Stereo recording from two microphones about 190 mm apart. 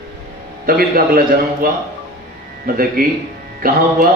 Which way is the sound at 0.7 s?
50° right (ahead or behind).